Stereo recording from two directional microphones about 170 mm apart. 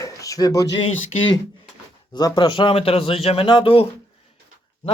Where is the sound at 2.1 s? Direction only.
25° left (ahead or behind).